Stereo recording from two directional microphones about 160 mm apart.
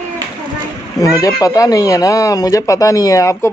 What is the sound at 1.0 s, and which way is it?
Speech, 20° left (ahead or behind).